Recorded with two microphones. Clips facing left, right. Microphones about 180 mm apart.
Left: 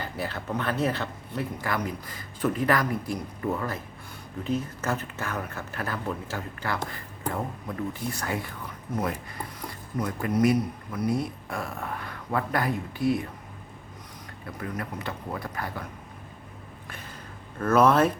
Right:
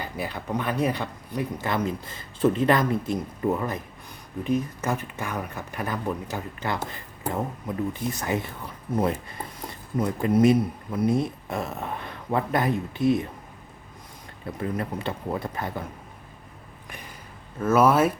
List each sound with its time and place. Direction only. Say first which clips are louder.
0.0 s speech: right 1 dB; 15° right (ahead or behind)
14.4 s speech: right 5 dB; 25° right (ahead or behind)
17.6 s speech: right 1 dB; 10° right (ahead or behind)